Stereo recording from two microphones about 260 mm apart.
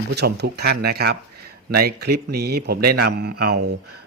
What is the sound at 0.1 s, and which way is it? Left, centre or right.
Speech, right.